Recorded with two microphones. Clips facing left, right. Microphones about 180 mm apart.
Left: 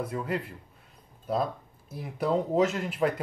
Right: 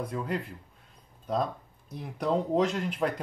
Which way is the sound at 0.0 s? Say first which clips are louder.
Left 1 dB; 5° left (ahead or behind).